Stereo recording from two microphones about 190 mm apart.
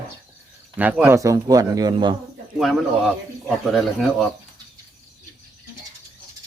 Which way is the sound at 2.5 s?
5° right (ahead or behind).